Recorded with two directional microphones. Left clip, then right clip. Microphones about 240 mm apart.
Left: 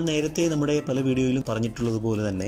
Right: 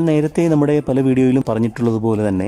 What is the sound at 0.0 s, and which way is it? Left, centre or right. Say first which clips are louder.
Speech: right 8 dB; right.